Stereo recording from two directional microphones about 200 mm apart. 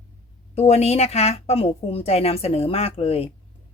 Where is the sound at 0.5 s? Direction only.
30° left (ahead or behind).